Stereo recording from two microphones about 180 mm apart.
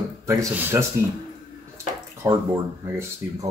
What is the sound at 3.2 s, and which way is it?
Speech, 10° right (ahead or behind).